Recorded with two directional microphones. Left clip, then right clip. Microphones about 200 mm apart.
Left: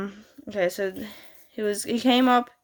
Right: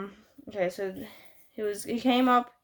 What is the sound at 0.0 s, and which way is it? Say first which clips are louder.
Speech: left 5 dB; 35° left (ahead or behind).